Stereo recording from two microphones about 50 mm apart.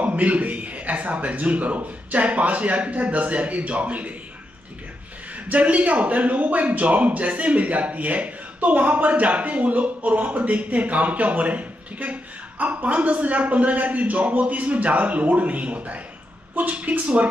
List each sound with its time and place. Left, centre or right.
0.0 s a man's voice: right
5.5 s a man's voice: right